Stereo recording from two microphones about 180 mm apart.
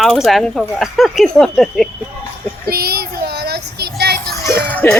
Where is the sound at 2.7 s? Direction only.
60° right (ahead or behind).